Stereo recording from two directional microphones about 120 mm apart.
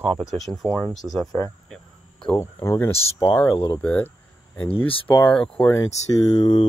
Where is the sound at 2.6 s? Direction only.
20° left (ahead or behind).